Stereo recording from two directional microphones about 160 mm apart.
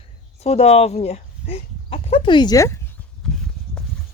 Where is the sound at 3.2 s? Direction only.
5° left (ahead or behind).